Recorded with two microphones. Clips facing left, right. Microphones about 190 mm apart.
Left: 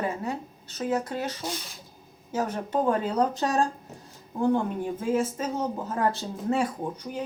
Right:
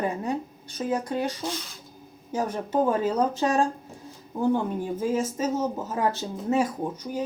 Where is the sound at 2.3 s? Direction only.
10° right (ahead or behind).